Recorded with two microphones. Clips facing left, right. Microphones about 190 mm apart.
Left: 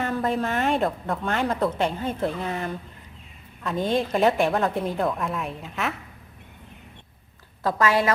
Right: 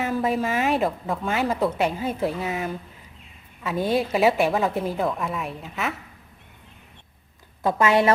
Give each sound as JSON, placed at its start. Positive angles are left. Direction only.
{"t": 0.0, "sound": "a woman's voice", "side_deg": -5}
{"t": 7.8, "sound": "a woman's voice", "side_deg": -25}